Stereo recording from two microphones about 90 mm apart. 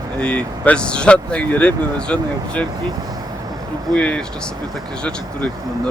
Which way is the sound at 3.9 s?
15° left (ahead or behind).